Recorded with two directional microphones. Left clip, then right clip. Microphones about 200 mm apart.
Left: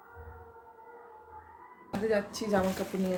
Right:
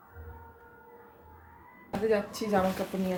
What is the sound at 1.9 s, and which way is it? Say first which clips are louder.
Speech: right 2 dB; centre (ahead or behind).